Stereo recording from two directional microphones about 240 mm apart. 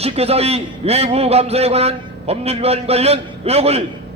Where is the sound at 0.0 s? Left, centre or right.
Right.